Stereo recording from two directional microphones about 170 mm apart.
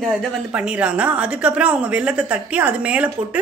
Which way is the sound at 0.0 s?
Centre (ahead or behind).